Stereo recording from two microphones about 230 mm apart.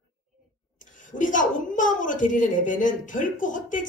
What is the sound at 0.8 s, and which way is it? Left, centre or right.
Speech, left.